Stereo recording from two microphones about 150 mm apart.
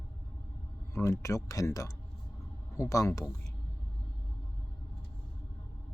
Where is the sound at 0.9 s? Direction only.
20° left (ahead or behind).